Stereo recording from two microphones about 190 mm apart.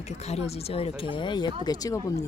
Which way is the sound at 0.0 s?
35° left (ahead or behind).